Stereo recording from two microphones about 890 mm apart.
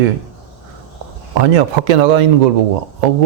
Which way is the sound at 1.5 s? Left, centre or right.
Right.